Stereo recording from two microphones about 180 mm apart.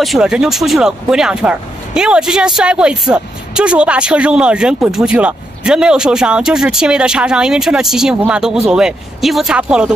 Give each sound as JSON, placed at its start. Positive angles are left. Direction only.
{"t": 0.0, "sound": "speech", "side_deg": 0}